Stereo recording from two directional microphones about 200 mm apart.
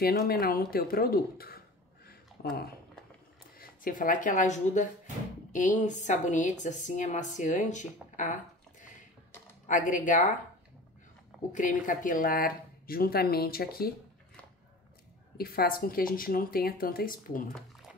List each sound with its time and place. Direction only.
0.0 s speech: 50° left (ahead or behind)
2.0 s a sound: 50° left (ahead or behind)
3.5 s a woman's voice: 45° left (ahead or behind)
9.7 s speech: 40° left (ahead or behind)
11.5 s speech: 40° left (ahead or behind)
15.3 s speech: 50° left (ahead or behind)